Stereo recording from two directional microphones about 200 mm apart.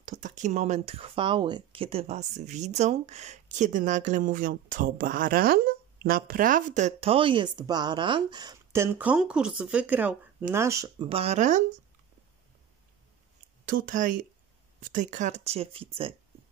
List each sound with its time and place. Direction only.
0.0 s speech: 40° right (ahead or behind); by 11.1 s 15° right (ahead or behind)
11.1 s speech: 30° right (ahead or behind)
13.7 s speech: 40° right (ahead or behind)